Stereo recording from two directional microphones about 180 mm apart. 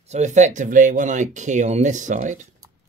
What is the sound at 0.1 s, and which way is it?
Speech, 40° right (ahead or behind).